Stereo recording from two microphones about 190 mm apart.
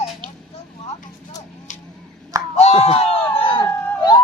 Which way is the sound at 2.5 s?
35° left (ahead or behind).